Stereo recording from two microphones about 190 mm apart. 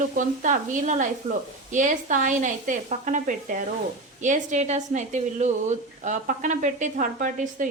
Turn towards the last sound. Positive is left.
turn(degrees=-45)  # may be behind; listen again after turning